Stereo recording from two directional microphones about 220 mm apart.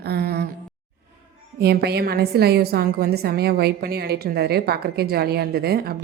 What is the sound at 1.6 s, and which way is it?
A woman's voice, 45° right (ahead or behind).